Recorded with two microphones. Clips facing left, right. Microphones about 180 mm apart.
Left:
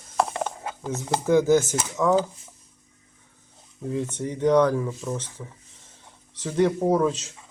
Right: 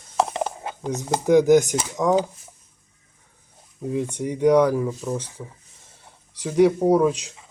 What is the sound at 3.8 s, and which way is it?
Speech, 15° right (ahead or behind).